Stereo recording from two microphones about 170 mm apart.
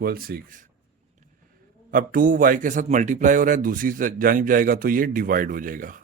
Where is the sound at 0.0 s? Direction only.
60° right (ahead or behind).